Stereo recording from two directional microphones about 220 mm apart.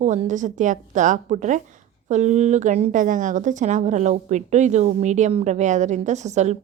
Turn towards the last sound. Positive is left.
turn(degrees=-30)  # may be behind; listen again after turning